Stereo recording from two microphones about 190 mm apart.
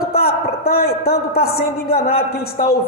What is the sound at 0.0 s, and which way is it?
A woman's voice, 55° left (ahead or behind).